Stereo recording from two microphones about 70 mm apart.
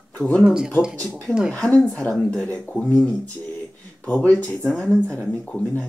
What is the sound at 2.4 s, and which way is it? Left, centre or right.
Speech, centre.